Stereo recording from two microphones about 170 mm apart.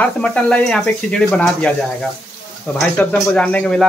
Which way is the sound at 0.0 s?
5° left (ahead or behind).